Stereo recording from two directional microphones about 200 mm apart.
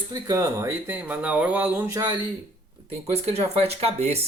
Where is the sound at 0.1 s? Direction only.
20° right (ahead or behind).